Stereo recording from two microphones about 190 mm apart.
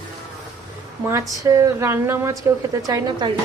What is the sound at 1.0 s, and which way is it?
A woman's voice, 15° right (ahead or behind).